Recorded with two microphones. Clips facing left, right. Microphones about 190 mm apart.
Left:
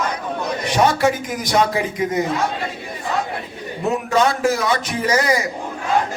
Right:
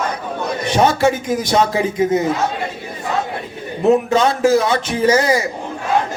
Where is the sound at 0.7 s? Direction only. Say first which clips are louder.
Right 2 dB; 25° right (ahead or behind).